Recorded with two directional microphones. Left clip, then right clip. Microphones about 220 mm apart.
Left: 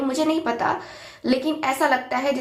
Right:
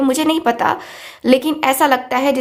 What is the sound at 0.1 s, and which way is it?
A woman's voice, 45° right (ahead or behind).